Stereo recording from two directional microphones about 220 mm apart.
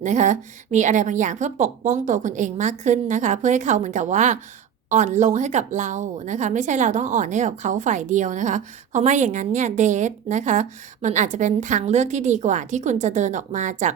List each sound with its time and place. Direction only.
0.0 s a woman's voice: 35° right (ahead or behind)